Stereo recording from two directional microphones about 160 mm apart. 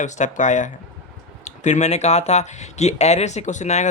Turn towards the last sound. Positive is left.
turn(degrees=45)  # may be behind; listen again after turning